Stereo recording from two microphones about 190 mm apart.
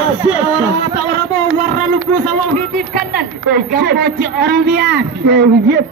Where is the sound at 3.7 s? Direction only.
55° right (ahead or behind).